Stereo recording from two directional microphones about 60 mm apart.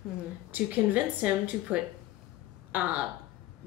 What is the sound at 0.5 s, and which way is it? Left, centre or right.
A woman's voice, right.